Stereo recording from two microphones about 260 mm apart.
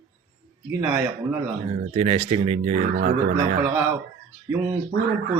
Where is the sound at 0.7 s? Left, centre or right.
Centre.